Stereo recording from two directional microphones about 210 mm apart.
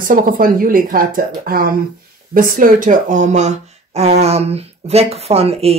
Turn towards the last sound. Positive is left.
turn(degrees=-30)  # may be behind; listen again after turning